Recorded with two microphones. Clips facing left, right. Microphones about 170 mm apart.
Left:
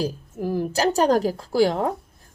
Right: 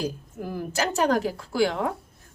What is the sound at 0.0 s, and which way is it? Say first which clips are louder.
A woman's voice: left 4 dB; 35° left (ahead or behind).